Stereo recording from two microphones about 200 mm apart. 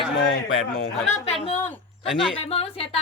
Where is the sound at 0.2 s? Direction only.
50° left (ahead or behind).